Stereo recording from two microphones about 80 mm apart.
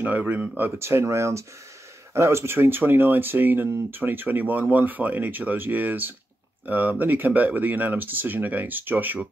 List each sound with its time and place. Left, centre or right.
0.0 s speech: right